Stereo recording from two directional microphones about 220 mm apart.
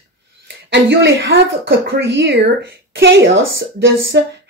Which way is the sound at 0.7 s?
50° right (ahead or behind).